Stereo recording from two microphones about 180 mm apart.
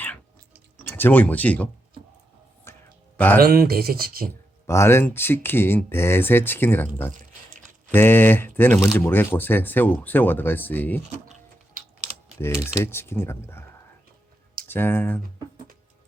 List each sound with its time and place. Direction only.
0.9 s speech: 10° left (ahead or behind)
2.7 s a sound: 15° left (ahead or behind)
3.2 s speech: 10° left (ahead or behind)
3.4 s speech: 60° right (ahead or behind)
4.6 s speech: 15° left (ahead or behind)
7.1 s a sound: 45° right (ahead or behind)
7.9 s speech: 10° left (ahead or behind)
12.6 s speech: 15° left (ahead or behind)
14.7 s speech: 10° left (ahead or behind)